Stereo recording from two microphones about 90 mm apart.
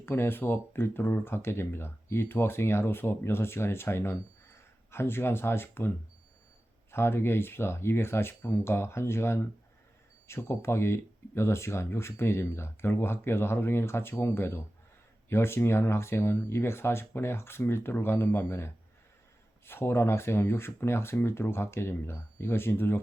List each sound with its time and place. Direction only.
0.0 s speech: 25° left (ahead or behind)
6.9 s speech: 25° left (ahead or behind)
19.6 s speech: 25° left (ahead or behind)